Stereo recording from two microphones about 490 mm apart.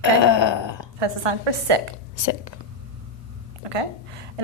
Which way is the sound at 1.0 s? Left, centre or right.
Right.